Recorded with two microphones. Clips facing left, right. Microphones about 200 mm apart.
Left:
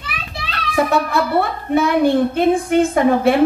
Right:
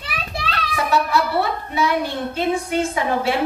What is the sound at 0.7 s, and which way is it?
A woman's voice, 55° left (ahead or behind).